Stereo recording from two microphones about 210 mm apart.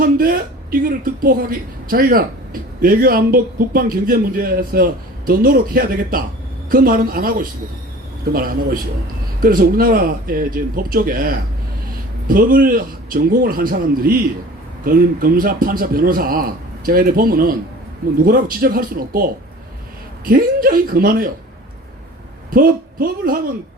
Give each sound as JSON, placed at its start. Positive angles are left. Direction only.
{"t": 0.0, "sound": "speech", "side_deg": -45}
{"t": 22.4, "sound": "speech", "side_deg": -40}